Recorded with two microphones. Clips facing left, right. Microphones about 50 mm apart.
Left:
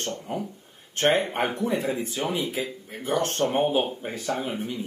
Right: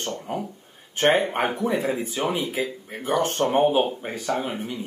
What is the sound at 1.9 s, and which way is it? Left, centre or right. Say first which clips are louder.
Speech: right 2 dB; right.